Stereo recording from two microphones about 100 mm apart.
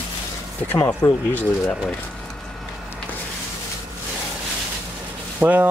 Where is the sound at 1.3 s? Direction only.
15° left (ahead or behind).